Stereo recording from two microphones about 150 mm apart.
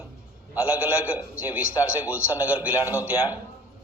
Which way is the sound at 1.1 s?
10° right (ahead or behind).